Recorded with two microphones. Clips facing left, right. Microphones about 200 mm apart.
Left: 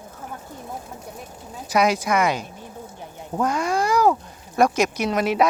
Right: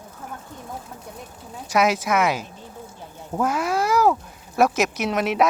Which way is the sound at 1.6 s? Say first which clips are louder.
Even; centre (ahead or behind).